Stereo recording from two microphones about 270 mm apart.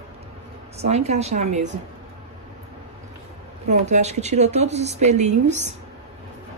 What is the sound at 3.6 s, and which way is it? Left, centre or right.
Speech, right.